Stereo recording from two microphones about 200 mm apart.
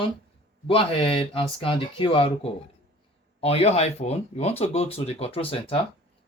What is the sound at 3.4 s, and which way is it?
Speech, 30° left (ahead or behind).